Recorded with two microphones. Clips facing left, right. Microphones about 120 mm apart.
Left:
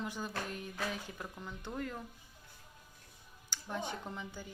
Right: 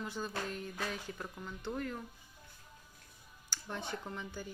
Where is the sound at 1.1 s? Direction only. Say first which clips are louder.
Right 1 dB; 5° left (ahead or behind).